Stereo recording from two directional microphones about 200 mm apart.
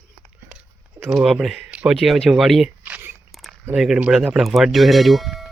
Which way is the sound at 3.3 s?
Centre (ahead or behind).